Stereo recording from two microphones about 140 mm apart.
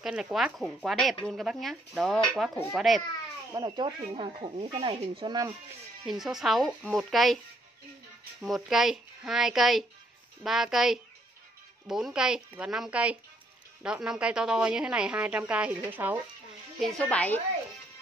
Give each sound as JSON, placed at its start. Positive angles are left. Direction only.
{"t": 0.0, "sound": "speech", "side_deg": -5}
{"t": 3.5, "sound": "speech", "side_deg": -35}
{"t": 6.0, "sound": "speech", "side_deg": -5}
{"t": 8.4, "sound": "a woman's voice", "side_deg": -5}
{"t": 16.8, "sound": "a woman's voice", "side_deg": 10}